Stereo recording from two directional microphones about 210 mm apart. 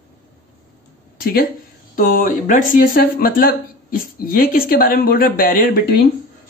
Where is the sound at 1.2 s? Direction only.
45° left (ahead or behind).